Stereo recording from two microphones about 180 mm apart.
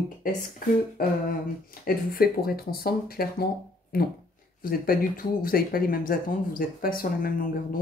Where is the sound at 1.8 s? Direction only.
55° left (ahead or behind).